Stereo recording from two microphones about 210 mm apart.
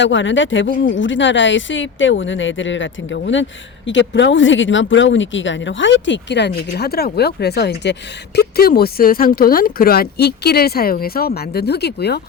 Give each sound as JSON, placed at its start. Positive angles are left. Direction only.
{"t": 0.0, "sound": "speech", "side_deg": 60}